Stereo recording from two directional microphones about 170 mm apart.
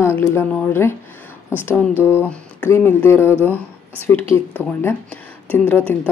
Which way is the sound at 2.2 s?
15° left (ahead or behind).